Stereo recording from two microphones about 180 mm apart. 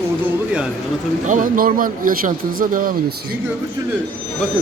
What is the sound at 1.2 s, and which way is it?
A man's voice, 45° right (ahead or behind).